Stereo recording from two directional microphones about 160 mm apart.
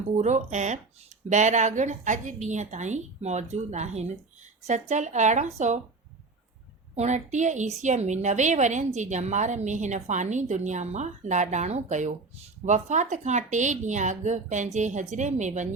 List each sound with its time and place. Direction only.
0.2 s a woman's voice: 45° right (ahead or behind)
6.9 s a woman's voice: 45° right (ahead or behind)